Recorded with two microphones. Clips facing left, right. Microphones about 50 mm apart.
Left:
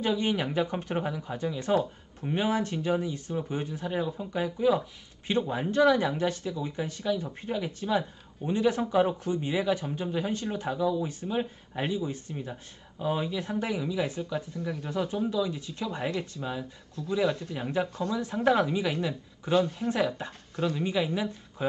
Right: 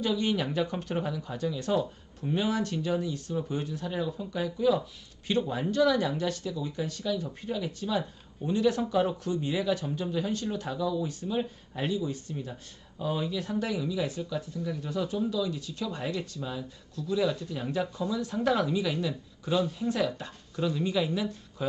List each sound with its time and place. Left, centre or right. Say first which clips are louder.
0.0 s speech: left 1 dB; left
19.5 s speech: left 3 dB; left
19.9 s speech: left 1 dB; left